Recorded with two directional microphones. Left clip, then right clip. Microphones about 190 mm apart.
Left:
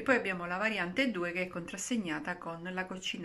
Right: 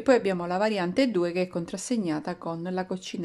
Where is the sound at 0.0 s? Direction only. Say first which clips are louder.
Right 7 dB; 35° right (ahead or behind).